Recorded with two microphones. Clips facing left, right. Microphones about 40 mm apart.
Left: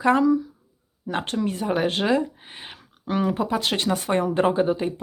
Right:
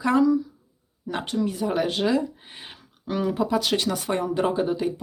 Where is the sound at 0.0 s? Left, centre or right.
Left.